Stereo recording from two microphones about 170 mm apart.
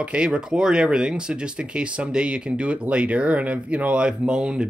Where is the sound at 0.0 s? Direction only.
5° right (ahead or behind).